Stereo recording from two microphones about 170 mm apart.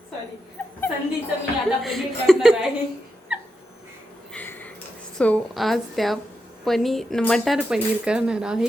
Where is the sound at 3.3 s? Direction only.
5° right (ahead or behind).